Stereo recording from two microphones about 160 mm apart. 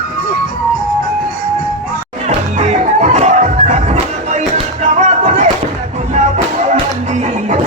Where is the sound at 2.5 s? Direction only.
45° right (ahead or behind).